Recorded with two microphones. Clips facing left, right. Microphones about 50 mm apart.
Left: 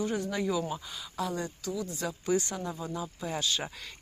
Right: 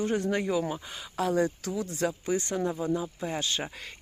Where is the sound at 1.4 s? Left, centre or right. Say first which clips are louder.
Right 6 dB; right.